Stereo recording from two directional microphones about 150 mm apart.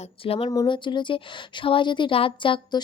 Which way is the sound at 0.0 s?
40° left (ahead or behind).